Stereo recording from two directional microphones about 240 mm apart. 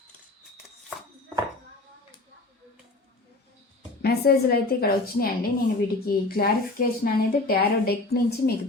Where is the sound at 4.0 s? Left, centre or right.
Left.